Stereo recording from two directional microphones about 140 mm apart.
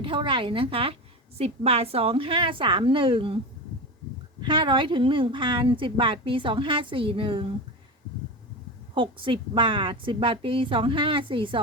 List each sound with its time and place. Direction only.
0.0 s a woman's voice: 40° right (ahead or behind)
4.4 s a woman's voice: 35° right (ahead or behind)
9.0 s a woman's voice: 40° right (ahead or behind)